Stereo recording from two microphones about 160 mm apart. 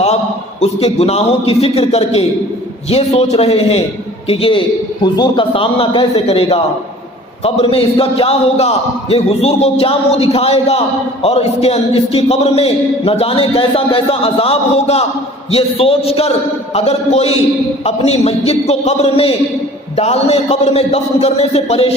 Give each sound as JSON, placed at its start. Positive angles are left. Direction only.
{"t": 0.6, "sound": "a man's voice", "side_deg": 40}